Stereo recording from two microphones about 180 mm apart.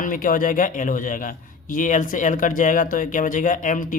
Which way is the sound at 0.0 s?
50° left (ahead or behind).